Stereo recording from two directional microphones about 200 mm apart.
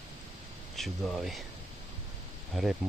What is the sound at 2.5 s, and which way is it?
Speech, centre (ahead or behind).